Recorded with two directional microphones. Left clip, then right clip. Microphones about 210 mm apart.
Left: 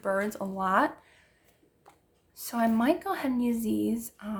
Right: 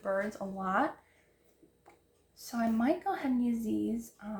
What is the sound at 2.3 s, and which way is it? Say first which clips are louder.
Speech: left 6 dB; 45° left (ahead or behind).